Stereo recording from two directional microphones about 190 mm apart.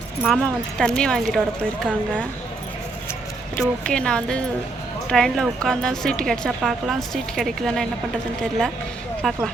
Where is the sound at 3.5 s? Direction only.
Centre (ahead or behind).